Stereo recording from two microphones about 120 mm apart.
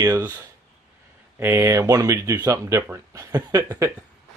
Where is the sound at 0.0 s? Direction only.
30° right (ahead or behind).